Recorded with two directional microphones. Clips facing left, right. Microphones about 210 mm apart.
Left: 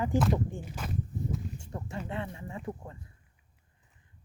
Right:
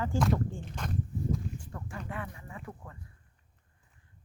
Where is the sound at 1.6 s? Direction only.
25° left (ahead or behind).